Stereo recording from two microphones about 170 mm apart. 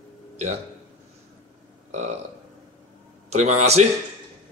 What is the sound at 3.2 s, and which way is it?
Speech, 40° right (ahead or behind).